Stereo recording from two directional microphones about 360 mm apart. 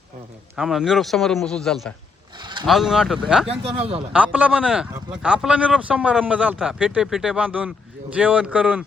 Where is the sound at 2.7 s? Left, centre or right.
Centre.